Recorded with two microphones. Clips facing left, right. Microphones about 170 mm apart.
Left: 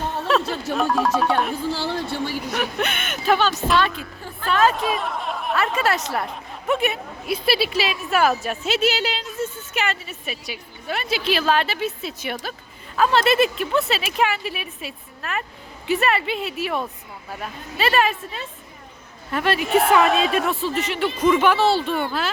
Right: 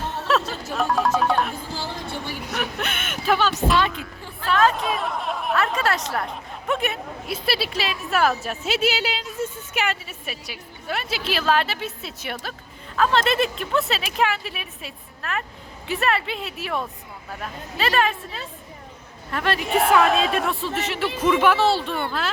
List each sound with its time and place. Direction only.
0.3 s a woman's voice: centre (ahead or behind)
2.6 s a woman's voice: centre (ahead or behind)
3.8 s a woman's voice: 15° right (ahead or behind)
4.0 s a woman's voice: centre (ahead or behind)